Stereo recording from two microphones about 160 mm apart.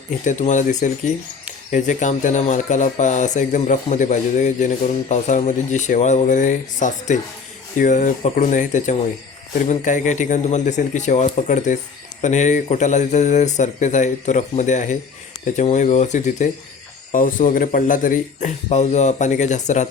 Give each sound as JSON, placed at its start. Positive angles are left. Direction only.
{"t": 0.3, "sound": "speech", "side_deg": 50}